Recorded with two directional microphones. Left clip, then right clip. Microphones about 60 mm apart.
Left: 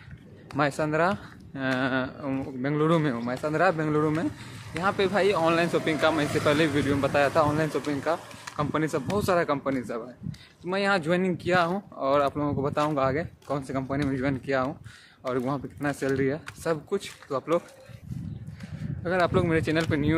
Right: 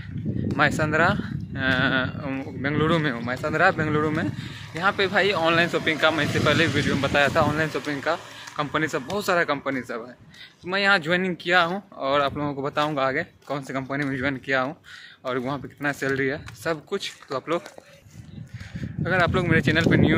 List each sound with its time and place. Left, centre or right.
0.6 s speech: centre
1.8 s speech: left
2.2 s speech: centre
2.8 s speech: left; by 4.1 s centre
4.8 s speech: centre
13.6 s speech: centre
16.1 s speech: centre
19.2 s speech: left